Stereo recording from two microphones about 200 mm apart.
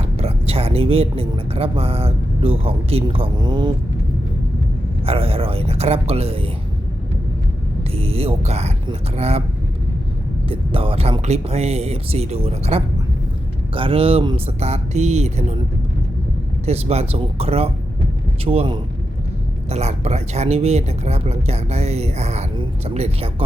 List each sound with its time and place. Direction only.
0.0 s speech: 30° right (ahead or behind)
5.0 s speech: 30° right (ahead or behind)
7.9 s speech: 30° right (ahead or behind)
10.5 s speech: 25° right (ahead or behind)
16.6 s speech: 30° right (ahead or behind)